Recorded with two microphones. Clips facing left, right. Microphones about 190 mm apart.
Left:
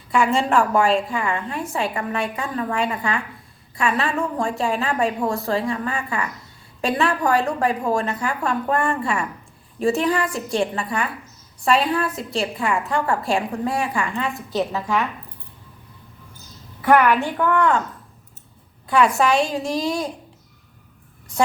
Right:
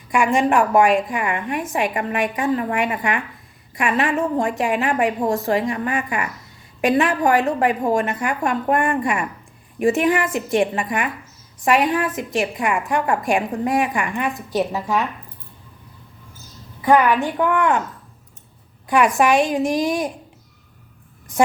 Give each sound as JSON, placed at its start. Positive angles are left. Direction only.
{"t": 0.1, "sound": "a woman's voice", "side_deg": -15}
{"t": 16.8, "sound": "a woman's voice", "side_deg": -15}
{"t": 18.9, "sound": "a woman's voice", "side_deg": -15}